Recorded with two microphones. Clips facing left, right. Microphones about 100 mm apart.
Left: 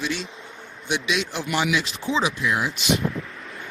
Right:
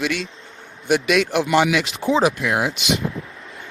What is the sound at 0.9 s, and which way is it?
Speech, 55° right (ahead or behind).